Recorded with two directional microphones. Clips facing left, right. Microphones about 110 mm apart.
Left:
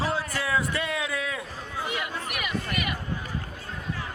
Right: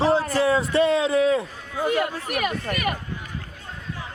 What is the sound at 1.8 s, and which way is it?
Speech, 45° right (ahead or behind).